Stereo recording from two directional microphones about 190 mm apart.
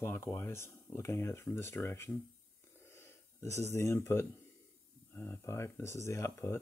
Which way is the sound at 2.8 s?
15° left (ahead or behind).